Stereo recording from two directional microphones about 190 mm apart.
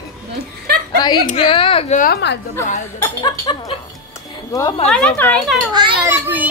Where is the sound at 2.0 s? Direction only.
60° left (ahead or behind).